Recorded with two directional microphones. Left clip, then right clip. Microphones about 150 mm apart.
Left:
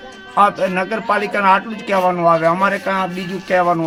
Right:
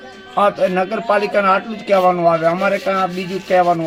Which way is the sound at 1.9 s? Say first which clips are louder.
Right 1 dB; 25° left (ahead or behind).